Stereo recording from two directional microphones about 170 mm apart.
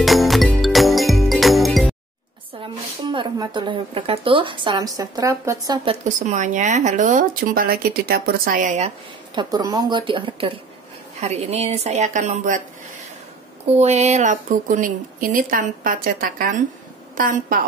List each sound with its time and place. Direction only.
0.0 s music: centre (ahead or behind)
2.6 s speech: 30° right (ahead or behind)
5.9 s speech: 45° right (ahead or behind)
9.3 s speech: 25° right (ahead or behind); by 12.6 s 45° right (ahead or behind)
13.7 s a woman's voice: 40° right (ahead or behind)